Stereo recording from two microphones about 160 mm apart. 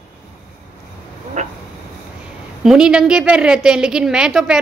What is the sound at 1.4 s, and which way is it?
Vehicle, 45° right (ahead or behind).